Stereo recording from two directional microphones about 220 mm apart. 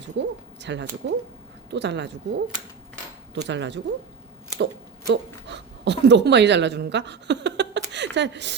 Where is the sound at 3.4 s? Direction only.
55° right (ahead or behind).